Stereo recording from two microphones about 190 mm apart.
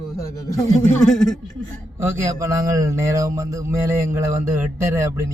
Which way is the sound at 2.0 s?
15° right (ahead or behind).